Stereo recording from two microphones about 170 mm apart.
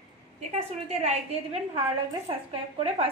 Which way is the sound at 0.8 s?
40° right (ahead or behind).